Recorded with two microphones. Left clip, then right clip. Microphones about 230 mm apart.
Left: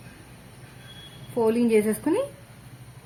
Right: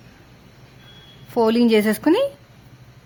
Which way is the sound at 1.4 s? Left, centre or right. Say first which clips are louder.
Right 5 dB; right.